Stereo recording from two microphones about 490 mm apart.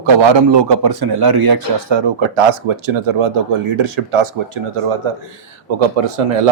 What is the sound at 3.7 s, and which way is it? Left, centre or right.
Speech, right.